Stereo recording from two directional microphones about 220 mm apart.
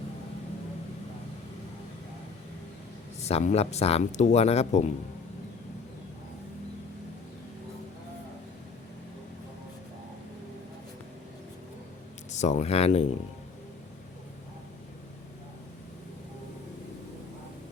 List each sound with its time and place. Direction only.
3.2 s speech: 30° left (ahead or behind)
12.3 s speech: 30° left (ahead or behind)